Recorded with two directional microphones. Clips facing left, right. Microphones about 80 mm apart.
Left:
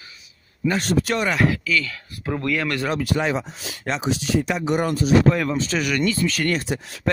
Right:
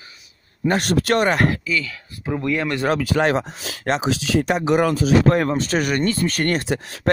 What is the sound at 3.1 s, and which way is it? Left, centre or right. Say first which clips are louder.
Speech: right 4 dB; right.